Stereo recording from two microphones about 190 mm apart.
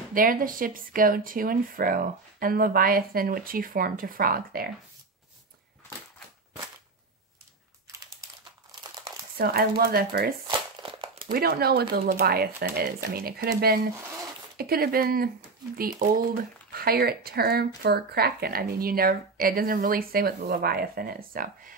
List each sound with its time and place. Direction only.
0.1 s speech: 45° right (ahead or behind)
9.4 s speech: 55° right (ahead or behind)
10.4 s crumpling: 25° right (ahead or behind)
11.3 s speech: 55° right (ahead or behind)
16.7 s speech: 55° right (ahead or behind)